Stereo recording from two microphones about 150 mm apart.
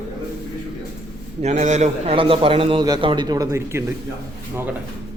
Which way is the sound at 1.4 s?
50° right (ahead or behind).